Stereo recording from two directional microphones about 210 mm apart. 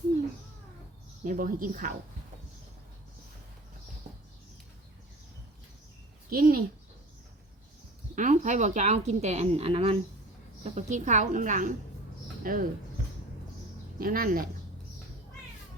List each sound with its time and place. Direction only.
1.2 s a woman's voice: 40° right (ahead or behind)
6.3 s speech: 45° right (ahead or behind)
8.1 s a woman's voice: 35° right (ahead or behind)
14.0 s speech: 45° right (ahead or behind)